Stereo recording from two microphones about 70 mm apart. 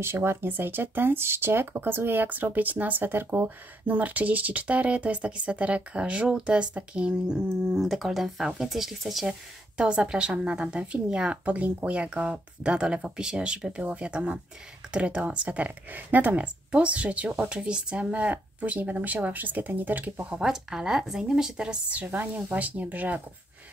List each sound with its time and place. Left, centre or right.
0.0 s speech: right; by 7.7 s centre
7.7 s speech: centre
9.8 s a woman's voice: centre
20.2 s a woman's voice: centre